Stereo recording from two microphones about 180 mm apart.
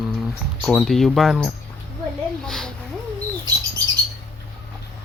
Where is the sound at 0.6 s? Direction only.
Centre (ahead or behind).